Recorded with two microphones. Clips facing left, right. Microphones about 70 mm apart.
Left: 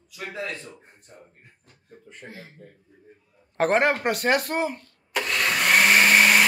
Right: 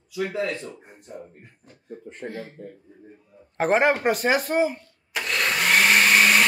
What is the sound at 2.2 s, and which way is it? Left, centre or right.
Speech, right.